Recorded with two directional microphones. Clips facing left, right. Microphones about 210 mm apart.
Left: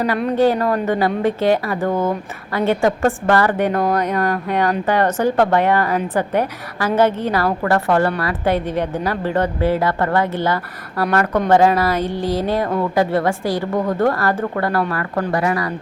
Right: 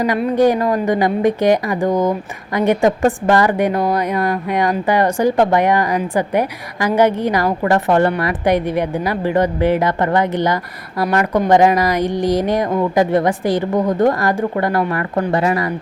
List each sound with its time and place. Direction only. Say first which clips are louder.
0.3 s a woman's voice: right 2 dB; 15° right (ahead or behind)